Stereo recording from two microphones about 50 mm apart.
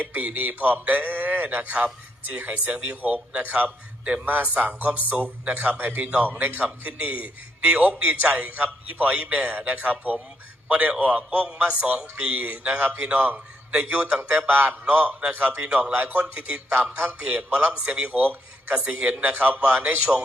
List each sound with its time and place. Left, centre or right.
0.0 s a man's voice: right
5.7 s a man's voice: right
12.3 s a man's voice: right
14.3 s a man's voice: right
14.8 s a man's voice: right